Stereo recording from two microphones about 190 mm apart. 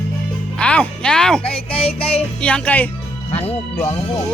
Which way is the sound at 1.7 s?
30° left (ahead or behind).